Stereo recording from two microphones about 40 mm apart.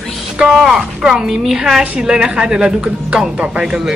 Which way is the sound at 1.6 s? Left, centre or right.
Right.